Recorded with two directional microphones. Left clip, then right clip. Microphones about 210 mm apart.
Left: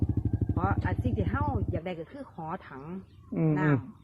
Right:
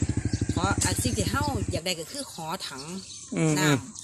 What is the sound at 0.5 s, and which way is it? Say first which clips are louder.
Speech: right 4 dB; 15° right (ahead or behind).